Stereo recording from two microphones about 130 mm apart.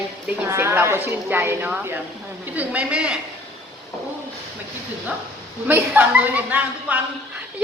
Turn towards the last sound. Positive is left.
turn(degrees=-10)  # may be behind; listen again after turning